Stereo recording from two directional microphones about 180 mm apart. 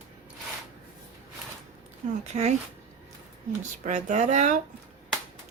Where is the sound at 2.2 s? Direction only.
40° right (ahead or behind).